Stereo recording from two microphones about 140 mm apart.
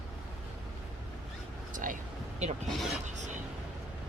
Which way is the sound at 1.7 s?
70° right (ahead or behind).